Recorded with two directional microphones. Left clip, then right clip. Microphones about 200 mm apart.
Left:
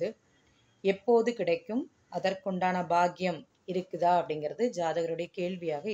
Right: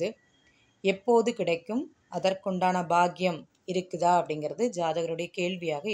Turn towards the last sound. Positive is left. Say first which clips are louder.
# right 3 dB
turn(degrees=-35)  # may be behind; listen again after turning